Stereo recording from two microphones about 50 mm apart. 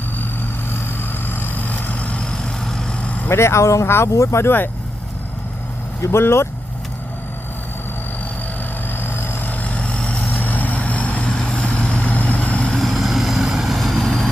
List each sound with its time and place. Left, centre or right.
1.3 s vehicle: left
2.3 s vehicle: centre
3.2 s speech: left
3.8 s speech: left
6.0 s speech: left
8.9 s vehicle: left
11.3 s vehicle: centre
12.6 s vehicle: centre